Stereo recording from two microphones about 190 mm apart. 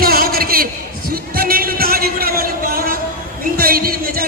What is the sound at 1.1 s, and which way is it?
Music, 50° right (ahead or behind).